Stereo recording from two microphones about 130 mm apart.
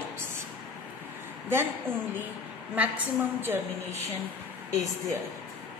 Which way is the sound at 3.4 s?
15° right (ahead or behind).